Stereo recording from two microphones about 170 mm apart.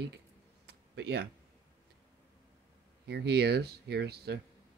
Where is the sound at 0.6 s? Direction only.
75° right (ahead or behind).